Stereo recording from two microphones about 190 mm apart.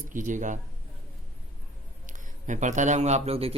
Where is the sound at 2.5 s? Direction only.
40° right (ahead or behind).